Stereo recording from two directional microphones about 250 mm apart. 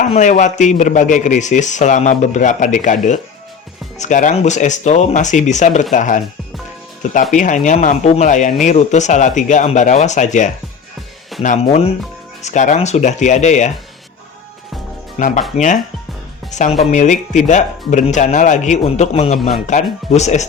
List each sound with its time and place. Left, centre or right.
0.0 s speech: left
15.2 s speech: left
19.4 s speech: centre
19.6 s speech: left